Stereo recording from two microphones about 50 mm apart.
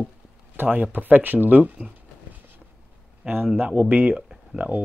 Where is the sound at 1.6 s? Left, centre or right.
Right.